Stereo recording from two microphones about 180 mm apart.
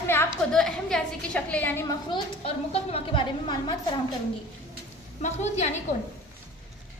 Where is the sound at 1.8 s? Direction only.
30° left (ahead or behind).